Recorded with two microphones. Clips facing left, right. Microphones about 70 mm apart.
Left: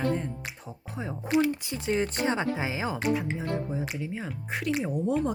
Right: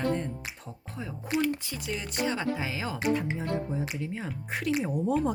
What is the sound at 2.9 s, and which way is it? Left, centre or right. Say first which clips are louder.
Speech: even; centre.